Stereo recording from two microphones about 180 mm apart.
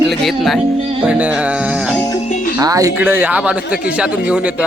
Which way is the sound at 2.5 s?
20° right (ahead or behind).